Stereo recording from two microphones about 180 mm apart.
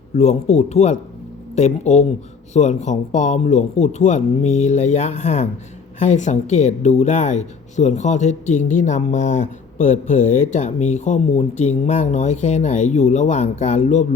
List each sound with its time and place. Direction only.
0.2 s speech: 40° left (ahead or behind)